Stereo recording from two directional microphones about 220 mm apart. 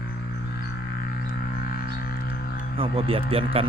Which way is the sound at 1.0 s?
45° left (ahead or behind).